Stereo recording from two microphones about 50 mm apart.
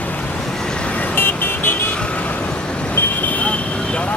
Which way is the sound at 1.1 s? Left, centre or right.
Left.